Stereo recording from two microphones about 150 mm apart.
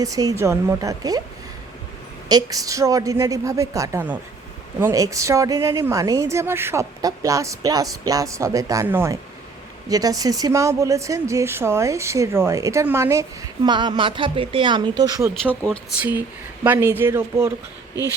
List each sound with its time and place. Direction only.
0.0 s a woman's voice: 25° right (ahead or behind)
2.3 s a woman's voice: 25° right (ahead or behind)
13.7 s speech: 30° right (ahead or behind)
15.4 s speech: 10° left (ahead or behind)
16.0 s speech: 10° right (ahead or behind)